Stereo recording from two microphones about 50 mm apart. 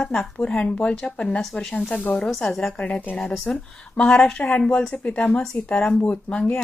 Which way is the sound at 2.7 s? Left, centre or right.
Left.